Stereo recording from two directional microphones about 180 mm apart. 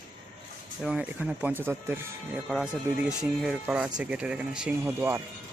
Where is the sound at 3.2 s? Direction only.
5° right (ahead or behind).